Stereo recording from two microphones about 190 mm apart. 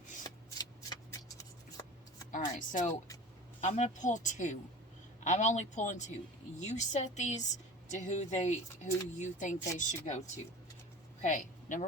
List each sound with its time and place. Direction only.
0.2 s shuffling cards: 20° left (ahead or behind)
2.6 s speech: 40° left (ahead or behind)